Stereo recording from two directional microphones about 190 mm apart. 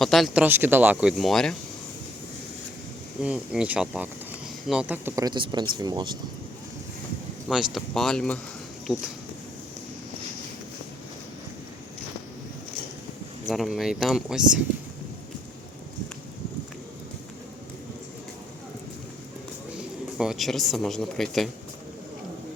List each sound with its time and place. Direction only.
0.0 s speech: centre (ahead or behind)
3.2 s insect: 5° right (ahead or behind)
4.7 s speech: 5° right (ahead or behind)
7.4 s speech: centre (ahead or behind)
13.4 s speech: centre (ahead or behind)
19.7 s speech: 5° right (ahead or behind)